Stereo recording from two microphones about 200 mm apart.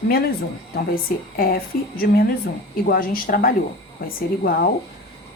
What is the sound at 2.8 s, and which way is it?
A woman's voice, 45° left (ahead or behind).